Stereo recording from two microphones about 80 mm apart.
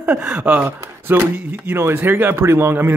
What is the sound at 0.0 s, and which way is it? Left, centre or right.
Speech, right.